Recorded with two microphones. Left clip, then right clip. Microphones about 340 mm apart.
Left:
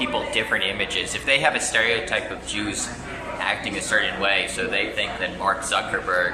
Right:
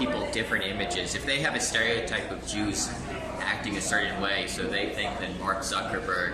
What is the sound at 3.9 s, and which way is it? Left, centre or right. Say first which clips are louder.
Speech: left 7 dB; centre.